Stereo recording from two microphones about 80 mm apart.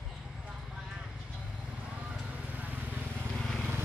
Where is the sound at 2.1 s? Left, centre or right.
Centre.